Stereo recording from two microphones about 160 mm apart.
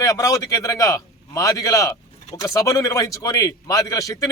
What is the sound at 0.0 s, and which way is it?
A man's voice, 20° left (ahead or behind).